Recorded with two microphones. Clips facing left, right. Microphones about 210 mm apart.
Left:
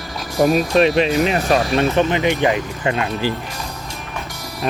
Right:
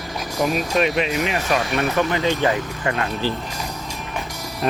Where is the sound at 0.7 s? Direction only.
30° left (ahead or behind).